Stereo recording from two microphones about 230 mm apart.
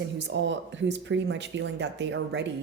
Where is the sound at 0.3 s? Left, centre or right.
Right.